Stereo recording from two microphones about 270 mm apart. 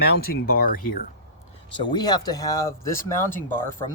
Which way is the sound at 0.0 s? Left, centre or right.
Left.